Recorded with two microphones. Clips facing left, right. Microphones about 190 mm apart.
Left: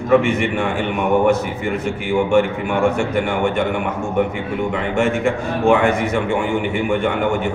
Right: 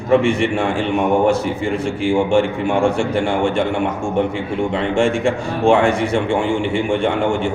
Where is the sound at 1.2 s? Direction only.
30° right (ahead or behind).